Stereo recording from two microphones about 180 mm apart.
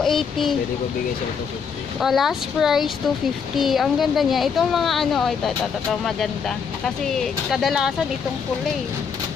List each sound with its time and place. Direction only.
0.0 s speech: centre (ahead or behind)
2.0 s speech: centre (ahead or behind)